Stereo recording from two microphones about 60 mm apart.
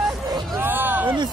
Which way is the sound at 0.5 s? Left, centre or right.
Right.